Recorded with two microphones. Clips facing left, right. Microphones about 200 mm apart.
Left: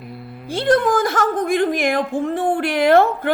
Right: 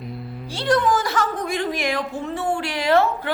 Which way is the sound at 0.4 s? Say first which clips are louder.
Left 4 dB; 55° left (ahead or behind).